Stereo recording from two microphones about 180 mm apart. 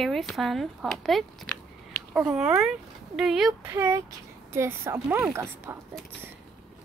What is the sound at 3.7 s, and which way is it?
Speech, 15° right (ahead or behind).